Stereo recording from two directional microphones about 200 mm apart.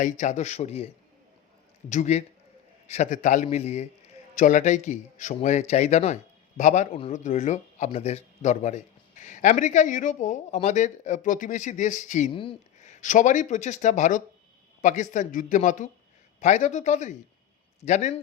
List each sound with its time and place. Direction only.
0.0 s speech: 35° left (ahead or behind)
1.9 s speech: 35° left (ahead or behind)
12.3 s a man's voice: 25° left (ahead or behind)